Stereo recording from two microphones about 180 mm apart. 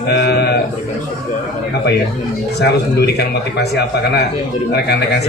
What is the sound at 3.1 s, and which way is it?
A man's voice, 65° left (ahead or behind).